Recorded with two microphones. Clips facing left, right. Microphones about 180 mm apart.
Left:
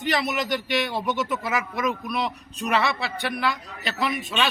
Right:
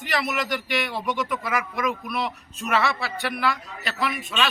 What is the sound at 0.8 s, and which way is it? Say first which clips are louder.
Speech: left 1 dB; 25° left (ahead or behind).